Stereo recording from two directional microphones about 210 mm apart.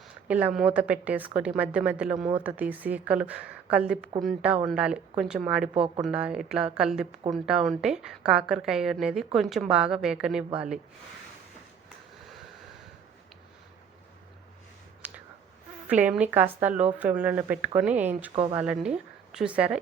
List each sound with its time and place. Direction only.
0.3 s a woman's voice: 5° right (ahead or behind)
5.7 s speech: 25° right (ahead or behind)
6.1 s a woman's voice: 5° right (ahead or behind)
15.0 s a sound: 10° right (ahead or behind)
15.9 s a woman's voice: 5° right (ahead or behind)